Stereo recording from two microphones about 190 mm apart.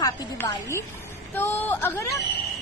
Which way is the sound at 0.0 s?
15° left (ahead or behind).